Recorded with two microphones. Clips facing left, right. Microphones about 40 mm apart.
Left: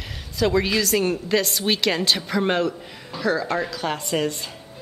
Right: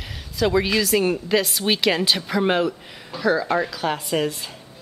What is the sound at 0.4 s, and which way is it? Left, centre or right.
A woman's voice, centre.